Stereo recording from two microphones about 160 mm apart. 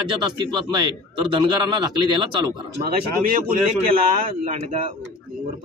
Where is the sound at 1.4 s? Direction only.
30° right (ahead or behind).